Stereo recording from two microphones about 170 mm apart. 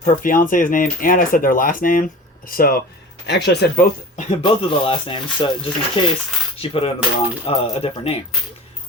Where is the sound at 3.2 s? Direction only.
80° left.